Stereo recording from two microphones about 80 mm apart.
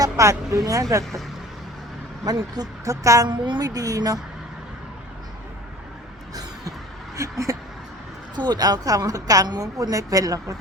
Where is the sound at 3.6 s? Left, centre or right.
Right.